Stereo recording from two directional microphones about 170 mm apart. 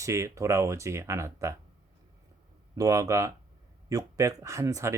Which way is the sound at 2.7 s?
20° right (ahead or behind).